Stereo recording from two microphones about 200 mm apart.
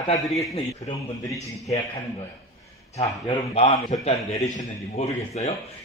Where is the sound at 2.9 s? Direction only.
30° left (ahead or behind).